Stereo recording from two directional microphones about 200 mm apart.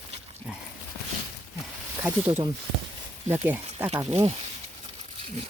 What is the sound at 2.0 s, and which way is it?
Speech, 10° right (ahead or behind).